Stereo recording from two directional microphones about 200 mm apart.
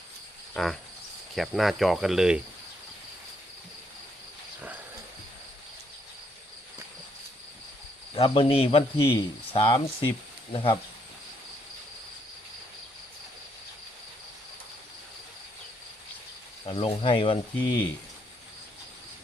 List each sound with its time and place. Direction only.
0.5 s cricket: centre (ahead or behind)
8.1 s speech: 30° left (ahead or behind)
16.6 s speech: 25° left (ahead or behind)